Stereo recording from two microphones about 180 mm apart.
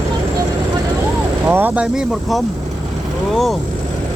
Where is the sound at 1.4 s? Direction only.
10° right (ahead or behind).